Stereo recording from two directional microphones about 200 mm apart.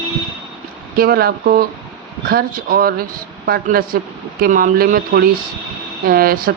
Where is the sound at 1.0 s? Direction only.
50° right (ahead or behind).